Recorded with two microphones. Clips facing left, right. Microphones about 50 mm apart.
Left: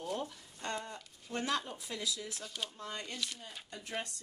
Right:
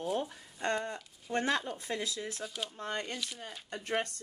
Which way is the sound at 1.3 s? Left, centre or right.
Right.